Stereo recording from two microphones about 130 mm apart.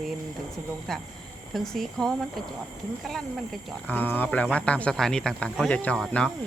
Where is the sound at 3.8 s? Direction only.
15° left (ahead or behind).